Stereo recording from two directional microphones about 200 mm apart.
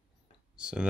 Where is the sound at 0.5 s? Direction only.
5° right (ahead or behind).